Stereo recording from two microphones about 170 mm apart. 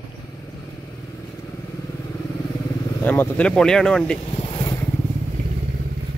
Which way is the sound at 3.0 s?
10° left (ahead or behind).